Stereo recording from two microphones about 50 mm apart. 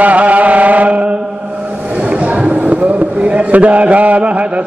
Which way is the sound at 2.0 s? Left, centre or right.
Right.